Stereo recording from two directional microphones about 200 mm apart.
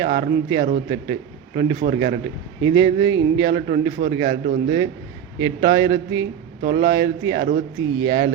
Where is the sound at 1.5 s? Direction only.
55° right (ahead or behind).